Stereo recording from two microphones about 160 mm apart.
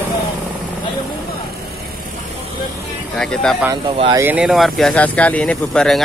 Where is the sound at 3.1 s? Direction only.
5° left (ahead or behind).